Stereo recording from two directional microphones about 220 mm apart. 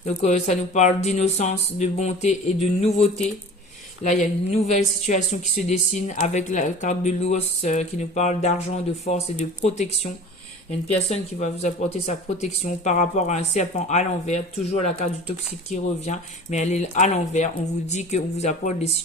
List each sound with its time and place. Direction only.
0.0 s speech: 30° left (ahead or behind)